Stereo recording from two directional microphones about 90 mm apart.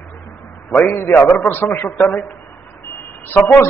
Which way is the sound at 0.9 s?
30° left (ahead or behind).